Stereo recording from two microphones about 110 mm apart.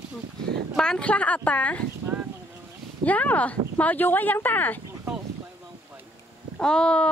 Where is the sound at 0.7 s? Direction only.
10° left (ahead or behind).